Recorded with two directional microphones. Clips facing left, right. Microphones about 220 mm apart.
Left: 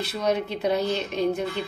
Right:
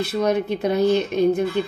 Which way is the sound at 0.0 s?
50° right (ahead or behind).